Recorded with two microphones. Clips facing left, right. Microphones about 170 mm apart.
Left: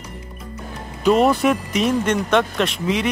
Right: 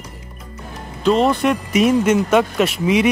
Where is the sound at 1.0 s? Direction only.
5° left (ahead or behind).